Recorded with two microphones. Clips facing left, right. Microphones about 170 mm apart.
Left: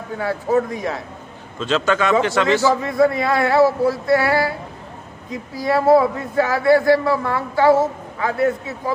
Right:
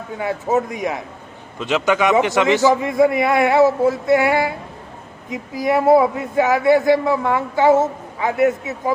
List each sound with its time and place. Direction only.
0.2 s a man's voice: 20° right (ahead or behind)